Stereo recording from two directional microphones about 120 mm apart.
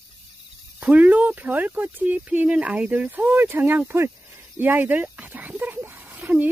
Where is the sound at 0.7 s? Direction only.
15° right (ahead or behind).